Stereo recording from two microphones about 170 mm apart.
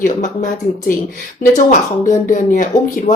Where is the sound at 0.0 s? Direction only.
50° left (ahead or behind).